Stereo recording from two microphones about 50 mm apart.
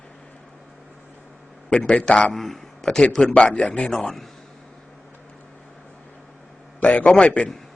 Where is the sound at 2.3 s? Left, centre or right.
Centre; by 3.9 s left.